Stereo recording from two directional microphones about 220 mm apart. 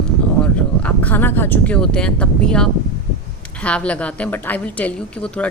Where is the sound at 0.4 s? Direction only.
5° left (ahead or behind).